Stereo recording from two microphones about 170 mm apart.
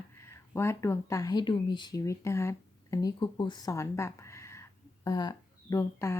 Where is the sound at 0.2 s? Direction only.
15° left (ahead or behind).